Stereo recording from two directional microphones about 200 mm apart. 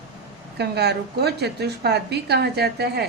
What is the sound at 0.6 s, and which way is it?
A woman's voice, 55° right (ahead or behind).